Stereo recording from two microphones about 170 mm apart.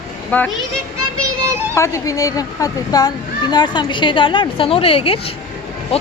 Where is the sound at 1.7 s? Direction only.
20° left (ahead or behind).